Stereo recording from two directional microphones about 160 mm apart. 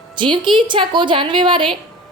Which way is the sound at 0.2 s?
30° right (ahead or behind).